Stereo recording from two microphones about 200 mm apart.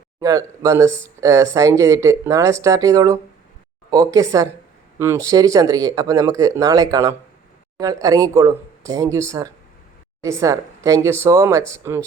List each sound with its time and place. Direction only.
0.2 s speech: 15° right (ahead or behind)